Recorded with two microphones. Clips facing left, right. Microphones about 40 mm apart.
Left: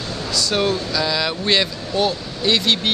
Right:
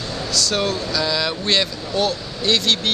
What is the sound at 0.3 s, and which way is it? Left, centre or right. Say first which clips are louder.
Speech: left 2 dB; centre.